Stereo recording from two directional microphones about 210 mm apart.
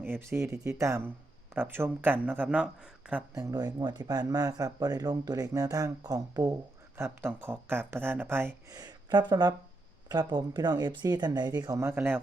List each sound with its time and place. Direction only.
0.0 s speech: 10° right (ahead or behind)